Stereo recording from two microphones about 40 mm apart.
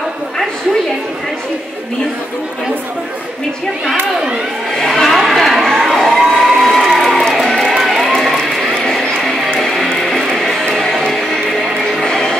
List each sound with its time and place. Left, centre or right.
4.7 s crowd: centre
6.8 s music: centre
7.7 s music: centre
9.8 s music: centre
12.0 s music: centre